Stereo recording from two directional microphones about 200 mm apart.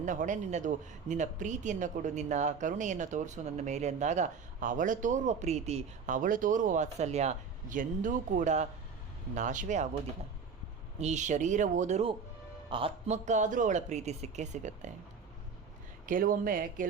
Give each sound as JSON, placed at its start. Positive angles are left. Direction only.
{"t": 0.0, "sound": "speech", "side_deg": -40}
{"t": 11.0, "sound": "speech", "side_deg": -35}
{"t": 16.0, "sound": "speech", "side_deg": -45}